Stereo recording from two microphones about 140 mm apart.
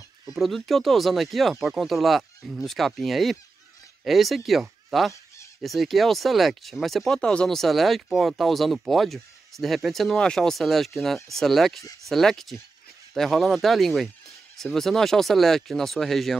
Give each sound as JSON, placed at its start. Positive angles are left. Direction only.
{"t": 0.3, "sound": "speech", "side_deg": 0}